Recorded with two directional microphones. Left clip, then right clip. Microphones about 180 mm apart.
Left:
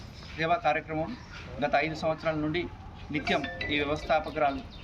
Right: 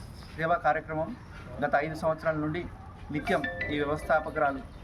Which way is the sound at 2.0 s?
15° right (ahead or behind).